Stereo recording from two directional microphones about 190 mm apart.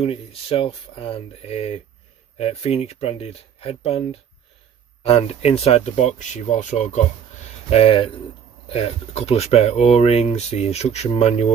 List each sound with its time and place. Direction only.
0.0 s speech: 30° left (ahead or behind)